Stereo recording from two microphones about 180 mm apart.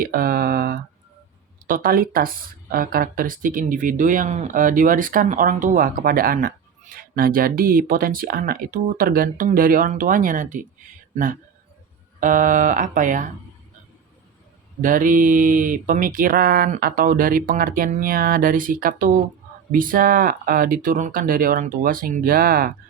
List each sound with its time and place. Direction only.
0.0 s speech: 55° right (ahead or behind)
14.8 s speech: 50° right (ahead or behind)